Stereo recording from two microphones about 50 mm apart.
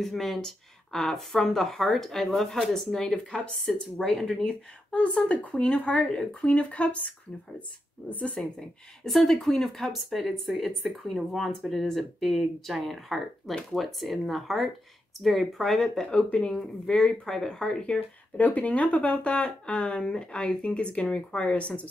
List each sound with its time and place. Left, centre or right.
0.0 s speech: centre
4.9 s speech: left
8.4 s speech: centre
16.0 s speech: centre
18.4 s speech: left